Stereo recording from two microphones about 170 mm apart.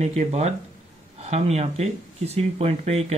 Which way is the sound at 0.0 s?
40° right (ahead or behind).